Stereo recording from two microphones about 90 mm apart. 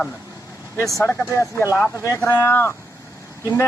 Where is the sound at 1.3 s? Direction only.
30° left (ahead or behind).